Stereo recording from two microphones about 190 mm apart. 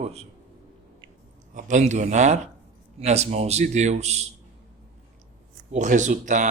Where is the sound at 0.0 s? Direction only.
35° right (ahead or behind).